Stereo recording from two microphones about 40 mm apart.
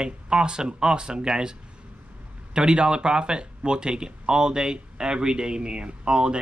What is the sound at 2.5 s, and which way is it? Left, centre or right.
Speech, right.